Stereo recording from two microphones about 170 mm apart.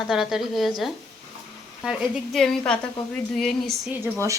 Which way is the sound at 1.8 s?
Centre (ahead or behind).